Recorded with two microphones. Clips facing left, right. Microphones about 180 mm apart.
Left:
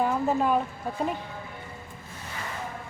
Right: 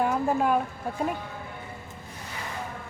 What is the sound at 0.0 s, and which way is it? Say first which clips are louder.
A woman's voice: even; centre (ahead or behind).